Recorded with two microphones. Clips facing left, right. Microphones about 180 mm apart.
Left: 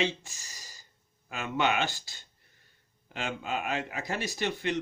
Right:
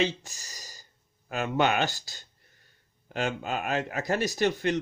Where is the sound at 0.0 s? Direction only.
40° right (ahead or behind).